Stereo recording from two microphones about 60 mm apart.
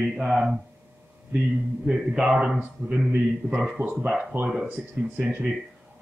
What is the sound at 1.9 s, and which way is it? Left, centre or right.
A man's voice, centre.